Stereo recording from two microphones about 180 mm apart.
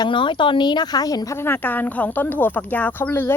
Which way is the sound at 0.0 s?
25° left (ahead or behind).